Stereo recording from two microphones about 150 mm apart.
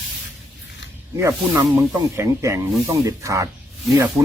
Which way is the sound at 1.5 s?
25° right (ahead or behind).